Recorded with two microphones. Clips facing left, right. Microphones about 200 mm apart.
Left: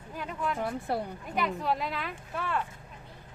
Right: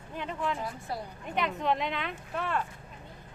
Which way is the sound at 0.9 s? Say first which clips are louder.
Left 6 dB; 60° left (ahead or behind).